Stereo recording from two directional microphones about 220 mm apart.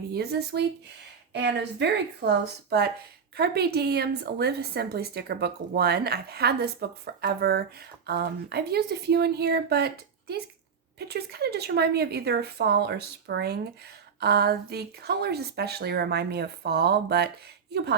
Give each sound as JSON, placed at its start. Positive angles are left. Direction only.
{"t": 0.1, "sound": "a woman's voice", "side_deg": -45}